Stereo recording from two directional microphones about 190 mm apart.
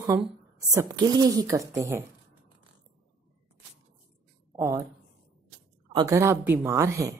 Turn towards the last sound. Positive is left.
turn(degrees=-15)  # may be behind; listen again after turning